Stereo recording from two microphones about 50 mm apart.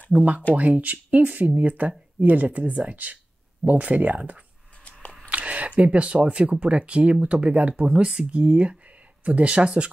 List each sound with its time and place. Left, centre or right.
0.1 s speech: right
5.3 s a sound: right
6.5 s speech: right